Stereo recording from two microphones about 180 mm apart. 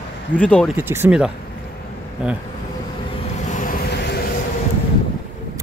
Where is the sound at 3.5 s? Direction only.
50° left (ahead or behind).